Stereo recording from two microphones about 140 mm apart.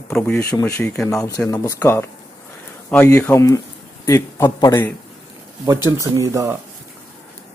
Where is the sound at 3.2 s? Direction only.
15° left (ahead or behind).